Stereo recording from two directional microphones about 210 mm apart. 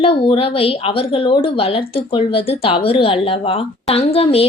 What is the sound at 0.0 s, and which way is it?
A woman's voice, 25° left (ahead or behind).